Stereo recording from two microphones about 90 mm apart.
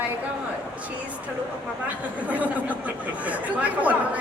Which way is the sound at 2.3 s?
15° right (ahead or behind).